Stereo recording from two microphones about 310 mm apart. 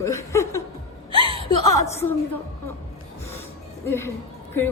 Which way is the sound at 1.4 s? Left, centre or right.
Centre.